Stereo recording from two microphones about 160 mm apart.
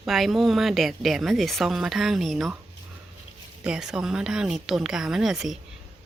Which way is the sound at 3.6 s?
5° right (ahead or behind).